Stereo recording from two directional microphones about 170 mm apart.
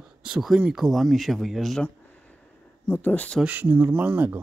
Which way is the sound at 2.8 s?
10° left (ahead or behind).